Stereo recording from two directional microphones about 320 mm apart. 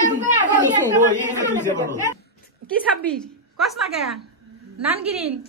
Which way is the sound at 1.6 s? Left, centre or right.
Centre.